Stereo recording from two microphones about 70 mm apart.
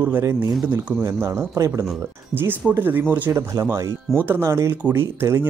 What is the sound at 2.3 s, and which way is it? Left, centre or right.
Speech, right.